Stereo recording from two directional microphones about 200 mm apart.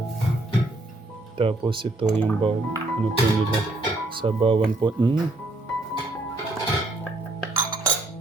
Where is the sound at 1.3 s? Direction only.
25° right (ahead or behind).